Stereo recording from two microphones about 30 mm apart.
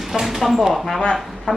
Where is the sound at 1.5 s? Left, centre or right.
Left.